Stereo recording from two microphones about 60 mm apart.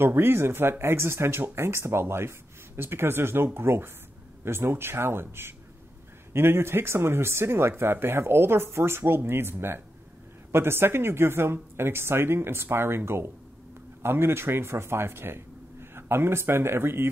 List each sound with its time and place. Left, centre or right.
0.0 s speech: right